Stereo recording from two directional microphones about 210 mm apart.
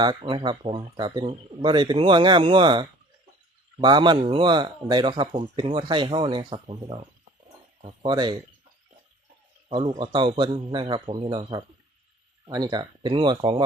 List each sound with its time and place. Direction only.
0.0 s speech: 20° right (ahead or behind)
9.6 s speech: 25° right (ahead or behind)